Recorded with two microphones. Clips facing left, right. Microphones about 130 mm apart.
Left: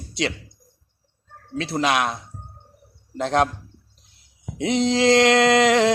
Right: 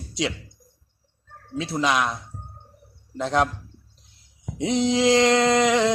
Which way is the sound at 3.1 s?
60° left (ahead or behind).